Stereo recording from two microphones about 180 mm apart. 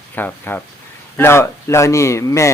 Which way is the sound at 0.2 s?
10° left (ahead or behind).